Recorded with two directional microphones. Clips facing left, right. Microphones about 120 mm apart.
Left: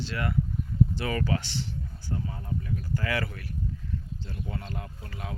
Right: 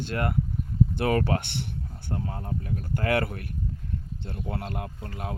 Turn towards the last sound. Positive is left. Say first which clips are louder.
# right 4 dB
turn(degrees=-50)  # may be behind; listen again after turning